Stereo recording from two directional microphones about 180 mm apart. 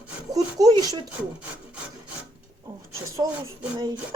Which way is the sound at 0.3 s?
20° right (ahead or behind).